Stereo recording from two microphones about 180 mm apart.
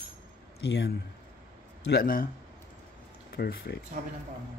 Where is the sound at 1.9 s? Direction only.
50° left (ahead or behind).